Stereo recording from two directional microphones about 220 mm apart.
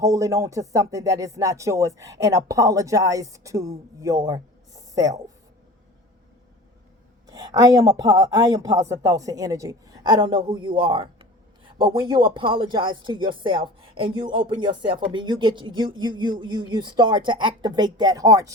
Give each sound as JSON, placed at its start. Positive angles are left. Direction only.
{"t": 0.0, "sound": "speech", "side_deg": -15}
{"t": 7.3, "sound": "speech", "side_deg": -15}